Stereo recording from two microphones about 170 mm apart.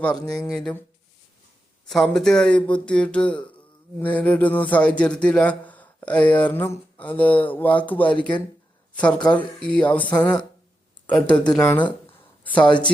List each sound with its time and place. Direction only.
0.5 s speech: 5° left (ahead or behind)
1.9 s speech: centre (ahead or behind)
11.1 s speech: 25° left (ahead or behind)
11.5 s speech: 10° left (ahead or behind)
12.4 s a sound: 10° left (ahead or behind)
12.6 s speech: 30° left (ahead or behind)